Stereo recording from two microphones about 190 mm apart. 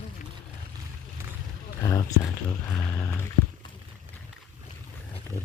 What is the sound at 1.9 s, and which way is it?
Speech, 15° left (ahead or behind).